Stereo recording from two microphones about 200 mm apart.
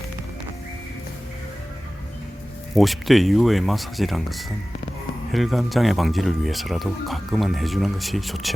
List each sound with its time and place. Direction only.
2.7 s speech: centre (ahead or behind)